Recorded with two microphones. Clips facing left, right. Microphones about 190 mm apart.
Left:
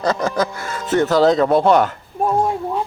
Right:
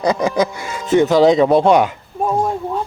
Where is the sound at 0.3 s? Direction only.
10° right (ahead or behind).